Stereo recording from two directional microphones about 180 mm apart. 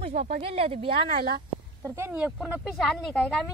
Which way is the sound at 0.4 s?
30° right (ahead or behind).